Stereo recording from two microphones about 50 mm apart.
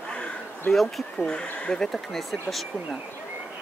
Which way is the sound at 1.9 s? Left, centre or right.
Centre.